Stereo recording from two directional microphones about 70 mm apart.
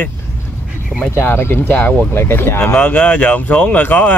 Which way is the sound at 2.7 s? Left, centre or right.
Left.